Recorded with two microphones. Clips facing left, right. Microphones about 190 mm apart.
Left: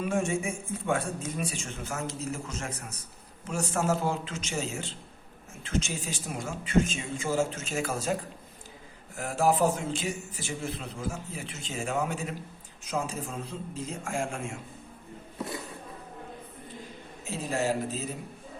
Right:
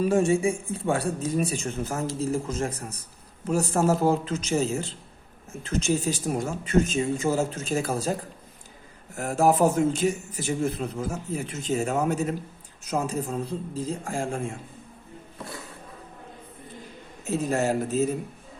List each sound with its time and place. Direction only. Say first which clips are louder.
0.0 s speech: right 7 dB; 35° right (ahead or behind)
9.1 s a man's voice: right 4 dB; 45° right (ahead or behind)
17.2 s a man's voice: right 5 dB; 45° right (ahead or behind)